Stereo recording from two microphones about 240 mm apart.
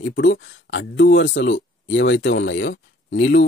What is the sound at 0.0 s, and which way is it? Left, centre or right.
Speech, left.